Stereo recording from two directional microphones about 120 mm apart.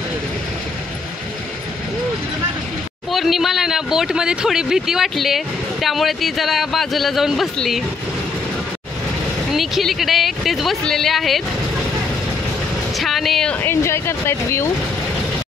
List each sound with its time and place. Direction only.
3.1 s speech: centre (ahead or behind)
9.5 s speech: centre (ahead or behind)
12.9 s speech: centre (ahead or behind)
13.6 s speech: 20° left (ahead or behind)